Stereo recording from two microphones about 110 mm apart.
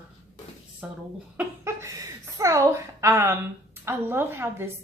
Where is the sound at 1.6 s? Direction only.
25° right (ahead or behind).